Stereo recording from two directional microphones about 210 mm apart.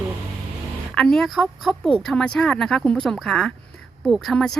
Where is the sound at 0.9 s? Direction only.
Centre (ahead or behind).